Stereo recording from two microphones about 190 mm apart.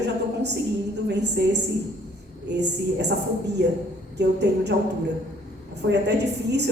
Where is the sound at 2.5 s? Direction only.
65° right (ahead or behind).